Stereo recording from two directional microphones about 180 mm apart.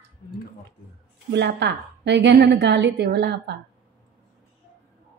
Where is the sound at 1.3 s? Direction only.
70° right (ahead or behind).